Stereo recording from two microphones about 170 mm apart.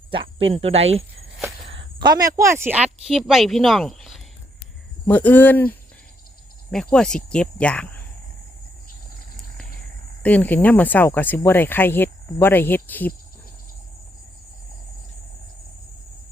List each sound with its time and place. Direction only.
0.1 s cricket: 30° right (ahead or behind)
0.5 s speech: 35° right (ahead or behind)
1.7 s speech: 25° right (ahead or behind)
3.1 s speech: centre (ahead or behind)
10.2 s speech: 10° left (ahead or behind)